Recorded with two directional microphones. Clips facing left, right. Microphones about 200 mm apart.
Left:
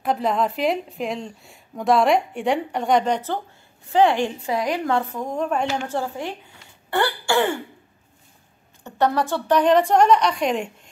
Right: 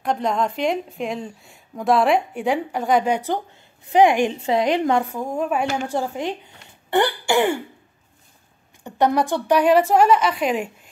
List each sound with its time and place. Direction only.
0.0 s a woman's voice: 5° left (ahead or behind); by 6.3 s 15° right (ahead or behind)
6.9 s throat clearing: 15° right (ahead or behind)
8.8 s a woman's voice: 15° right (ahead or behind)